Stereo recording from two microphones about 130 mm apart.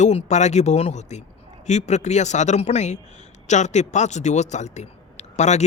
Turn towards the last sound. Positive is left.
turn(degrees=60)  # may be behind; listen again after turning